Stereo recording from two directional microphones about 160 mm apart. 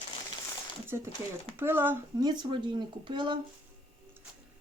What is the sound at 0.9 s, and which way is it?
Speech, 20° right (ahead or behind).